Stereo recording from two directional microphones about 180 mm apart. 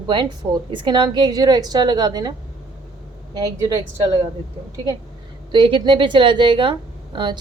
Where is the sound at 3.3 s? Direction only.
20° right (ahead or behind).